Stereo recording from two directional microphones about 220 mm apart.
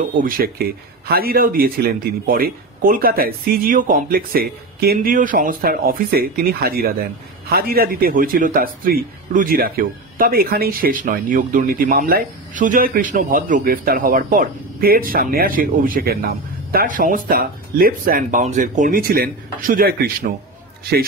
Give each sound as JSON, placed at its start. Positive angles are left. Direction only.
{"t": 0.2, "sound": "speech", "side_deg": -40}